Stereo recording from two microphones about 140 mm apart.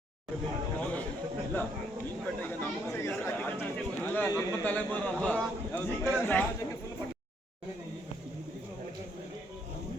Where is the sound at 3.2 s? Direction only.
15° left (ahead or behind).